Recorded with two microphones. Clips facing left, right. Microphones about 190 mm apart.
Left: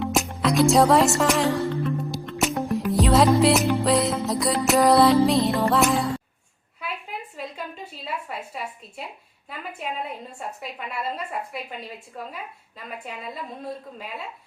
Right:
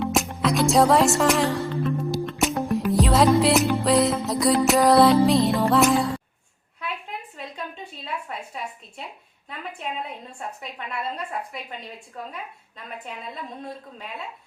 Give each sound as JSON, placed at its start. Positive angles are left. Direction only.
{"t": 0.1, "sound": "music", "side_deg": 0}
{"t": 3.8, "sound": "a woman's voice", "side_deg": 0}
{"t": 8.3, "sound": "a woman's voice", "side_deg": 5}